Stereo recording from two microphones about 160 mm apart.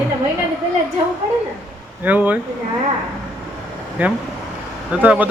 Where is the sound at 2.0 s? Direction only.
10° right (ahead or behind).